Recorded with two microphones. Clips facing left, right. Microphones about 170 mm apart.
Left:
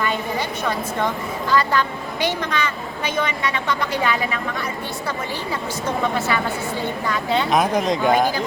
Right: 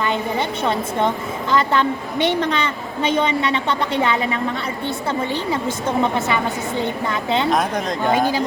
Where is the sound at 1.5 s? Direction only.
25° right (ahead or behind).